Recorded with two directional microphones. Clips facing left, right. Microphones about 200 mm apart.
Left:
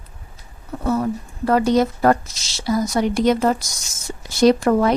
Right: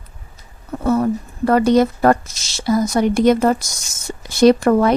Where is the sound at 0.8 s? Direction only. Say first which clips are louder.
Right 4 dB; 55° right (ahead or behind).